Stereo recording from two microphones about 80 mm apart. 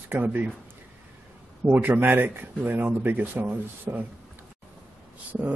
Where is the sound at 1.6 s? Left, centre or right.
Right.